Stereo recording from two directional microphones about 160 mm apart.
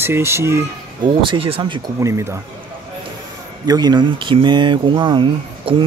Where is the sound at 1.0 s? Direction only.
35° right (ahead or behind).